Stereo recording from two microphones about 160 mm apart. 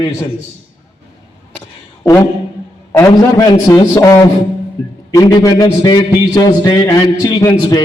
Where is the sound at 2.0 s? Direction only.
20° left (ahead or behind).